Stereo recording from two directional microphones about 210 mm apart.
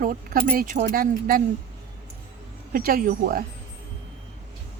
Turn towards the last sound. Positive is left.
turn(degrees=-40)  # may be behind; listen again after turning